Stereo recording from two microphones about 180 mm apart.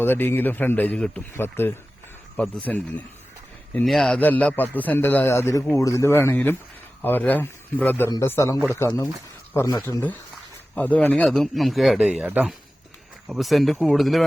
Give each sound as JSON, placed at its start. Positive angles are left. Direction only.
{"t": 0.0, "sound": "a man's voice", "side_deg": 10}